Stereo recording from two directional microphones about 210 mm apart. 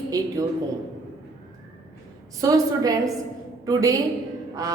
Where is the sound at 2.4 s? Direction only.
15° right (ahead or behind).